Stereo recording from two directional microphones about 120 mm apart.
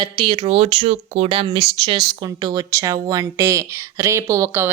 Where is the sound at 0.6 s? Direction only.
60° right (ahead or behind).